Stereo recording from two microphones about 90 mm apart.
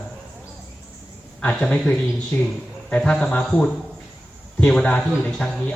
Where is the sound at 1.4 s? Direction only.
15° left (ahead or behind).